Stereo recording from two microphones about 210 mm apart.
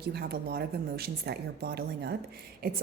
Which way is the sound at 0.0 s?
50° right (ahead or behind).